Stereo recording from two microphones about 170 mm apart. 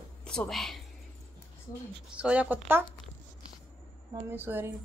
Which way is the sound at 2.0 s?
5° right (ahead or behind).